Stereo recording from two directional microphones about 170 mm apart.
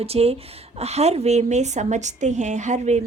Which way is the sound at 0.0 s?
35° right (ahead or behind).